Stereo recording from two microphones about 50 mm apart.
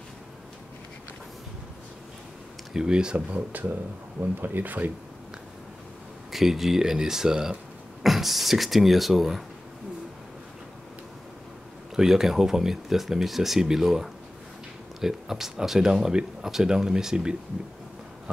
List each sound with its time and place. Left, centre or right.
2.7 s speech: centre
3.3 s speech: right
6.3 s speech: centre
11.9 s speech: centre